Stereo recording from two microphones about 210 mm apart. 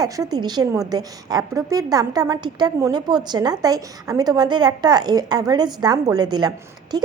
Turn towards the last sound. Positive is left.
turn(degrees=-20)  # may be behind; listen again after turning